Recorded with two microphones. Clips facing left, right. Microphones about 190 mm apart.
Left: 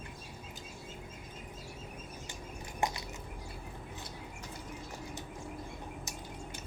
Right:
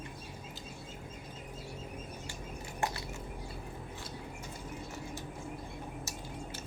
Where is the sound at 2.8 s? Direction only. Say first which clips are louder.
Left 1 dB; 15° left (ahead or behind).